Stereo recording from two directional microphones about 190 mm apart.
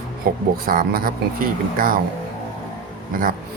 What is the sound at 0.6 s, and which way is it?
Speech, 50° right (ahead or behind).